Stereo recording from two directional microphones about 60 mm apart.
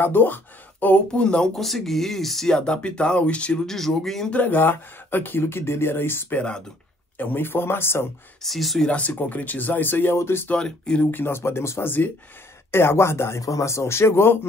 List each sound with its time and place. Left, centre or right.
0.0 s speech: left
1.1 s speech: centre
1.6 s speech: centre; by 3.6 s left
3.6 s speech: centre
4.3 s speech: left
8.4 s speech: centre
8.8 s speech: left
10.5 s speech: centre
11.1 s speech: left
13.4 s speech: left